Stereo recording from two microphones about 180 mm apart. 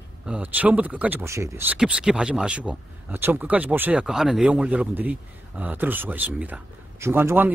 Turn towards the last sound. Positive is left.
turn(degrees=-10)  # may be behind; listen again after turning